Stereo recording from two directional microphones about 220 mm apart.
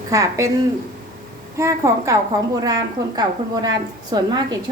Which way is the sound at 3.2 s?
20° right (ahead or behind).